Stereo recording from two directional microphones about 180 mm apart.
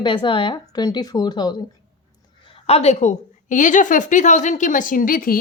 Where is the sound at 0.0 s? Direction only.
25° left (ahead or behind).